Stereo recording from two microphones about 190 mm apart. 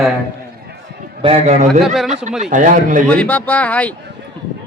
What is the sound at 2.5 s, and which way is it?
Speech, 40° right (ahead or behind).